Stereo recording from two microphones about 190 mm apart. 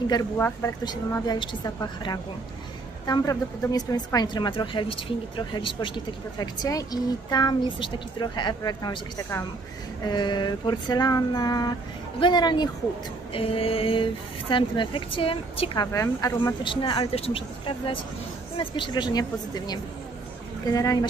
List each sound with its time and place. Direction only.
0.4 s a woman's voice: 15° left (ahead or behind)